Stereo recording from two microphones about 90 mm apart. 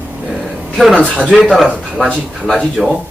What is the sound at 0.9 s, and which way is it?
Speech, 15° right (ahead or behind).